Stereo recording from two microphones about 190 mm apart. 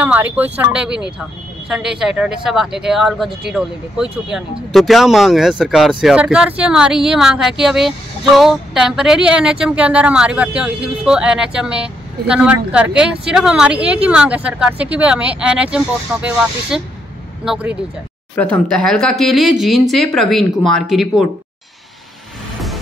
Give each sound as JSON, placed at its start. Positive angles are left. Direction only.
{"t": 0.0, "sound": "speech", "side_deg": -10}
{"t": 18.3, "sound": "speech", "side_deg": 5}